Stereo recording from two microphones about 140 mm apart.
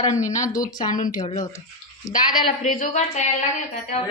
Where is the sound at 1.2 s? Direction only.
25° left (ahead or behind).